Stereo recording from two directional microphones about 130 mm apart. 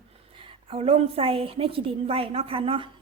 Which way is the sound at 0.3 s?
45° right (ahead or behind).